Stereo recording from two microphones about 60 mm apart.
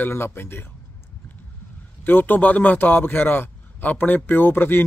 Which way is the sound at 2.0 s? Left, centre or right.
Left.